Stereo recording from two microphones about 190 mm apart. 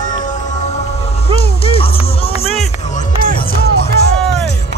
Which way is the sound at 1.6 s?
30° left (ahead or behind).